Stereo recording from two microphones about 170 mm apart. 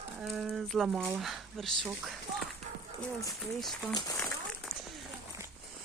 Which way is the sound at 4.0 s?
20° left (ahead or behind).